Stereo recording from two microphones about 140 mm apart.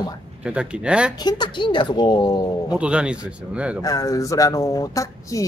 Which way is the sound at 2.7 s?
5° right (ahead or behind).